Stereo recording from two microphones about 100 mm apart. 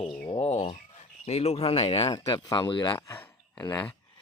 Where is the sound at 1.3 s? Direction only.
90° left; by 2.1 s 70° left (ahead or behind).